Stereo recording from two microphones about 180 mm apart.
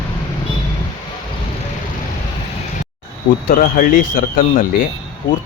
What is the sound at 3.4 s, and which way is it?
Speech, 50° left (ahead or behind).